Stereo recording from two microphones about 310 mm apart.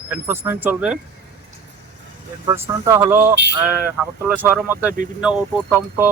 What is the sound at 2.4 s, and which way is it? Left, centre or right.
Speech, centre.